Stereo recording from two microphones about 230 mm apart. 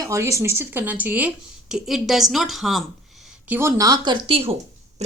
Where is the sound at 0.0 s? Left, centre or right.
Centre.